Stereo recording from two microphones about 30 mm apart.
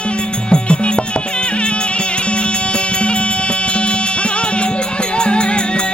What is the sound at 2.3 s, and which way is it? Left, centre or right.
Music, left.